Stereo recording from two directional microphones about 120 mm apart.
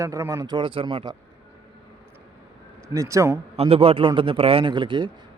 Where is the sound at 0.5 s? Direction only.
45° right (ahead or behind).